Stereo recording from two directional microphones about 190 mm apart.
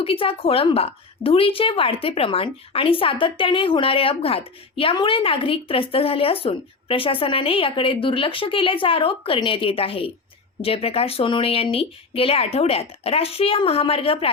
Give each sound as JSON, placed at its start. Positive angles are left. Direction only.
{"t": 0.0, "sound": "a woman's voice", "side_deg": 30}